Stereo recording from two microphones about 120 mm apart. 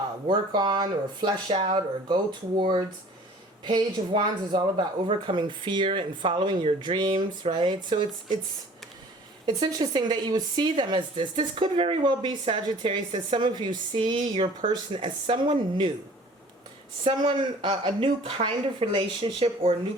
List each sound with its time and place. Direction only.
0.3 s speech: 40° right (ahead or behind)
9.5 s a woman's voice: 35° right (ahead or behind)
17.0 s a woman's voice: 45° right (ahead or behind)